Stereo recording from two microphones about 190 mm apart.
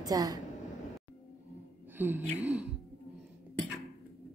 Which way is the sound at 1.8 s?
10° right (ahead or behind).